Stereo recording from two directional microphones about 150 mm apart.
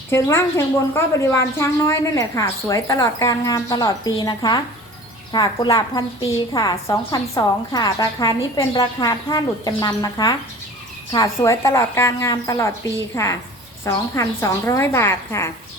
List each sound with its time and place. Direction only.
0.1 s a woman's voice: 15° left (ahead or behind)